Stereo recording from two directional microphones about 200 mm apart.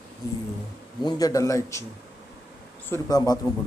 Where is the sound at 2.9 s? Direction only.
20° left (ahead or behind).